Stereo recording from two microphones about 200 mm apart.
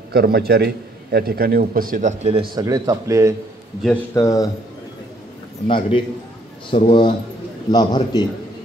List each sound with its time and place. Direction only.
0.1 s speech: 50° right (ahead or behind); by 2.4 s 35° right (ahead or behind)
2.5 s a man's voice: 20° right (ahead or behind)
4.1 s speech: 15° left (ahead or behind)
5.7 s a man's voice: 25° left (ahead or behind)